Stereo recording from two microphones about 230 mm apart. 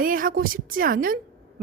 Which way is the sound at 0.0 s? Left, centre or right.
Right.